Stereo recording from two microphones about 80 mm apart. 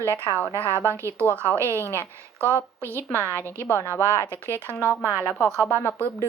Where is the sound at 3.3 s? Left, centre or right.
Left.